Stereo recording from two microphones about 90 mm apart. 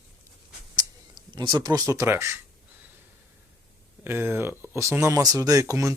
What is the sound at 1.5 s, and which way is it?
Speech, 50° right (ahead or behind).